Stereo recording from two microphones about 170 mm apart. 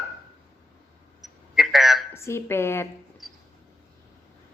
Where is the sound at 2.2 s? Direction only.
15° left (ahead or behind).